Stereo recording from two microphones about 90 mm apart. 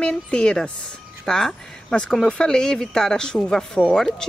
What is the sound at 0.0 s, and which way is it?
A woman's voice, 10° left (ahead or behind).